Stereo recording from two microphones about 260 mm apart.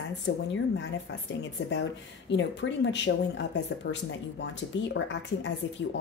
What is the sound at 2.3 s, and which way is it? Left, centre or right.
Speech, left.